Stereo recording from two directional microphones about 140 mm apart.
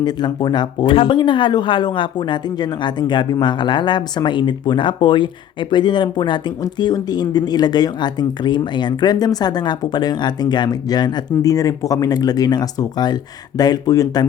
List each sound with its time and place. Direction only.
0.0 s speech: 30° left (ahead or behind)